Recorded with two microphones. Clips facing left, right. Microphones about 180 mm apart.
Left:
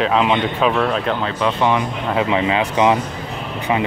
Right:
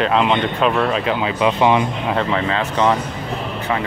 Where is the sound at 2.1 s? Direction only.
10° left (ahead or behind).